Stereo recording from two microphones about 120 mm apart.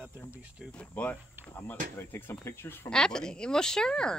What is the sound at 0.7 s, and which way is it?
Speech, 10° left (ahead or behind).